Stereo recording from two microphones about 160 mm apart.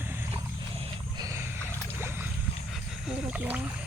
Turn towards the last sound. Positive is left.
turn(degrees=-10)  # may be behind; listen again after turning